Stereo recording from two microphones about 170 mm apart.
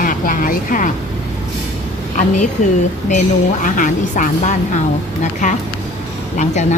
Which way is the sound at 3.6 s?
50° left (ahead or behind).